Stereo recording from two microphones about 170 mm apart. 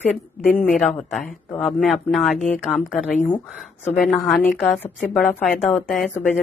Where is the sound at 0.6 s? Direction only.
Centre (ahead or behind).